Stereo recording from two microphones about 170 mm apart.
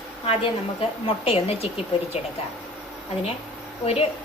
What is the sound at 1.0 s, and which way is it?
Speech, 35° left (ahead or behind).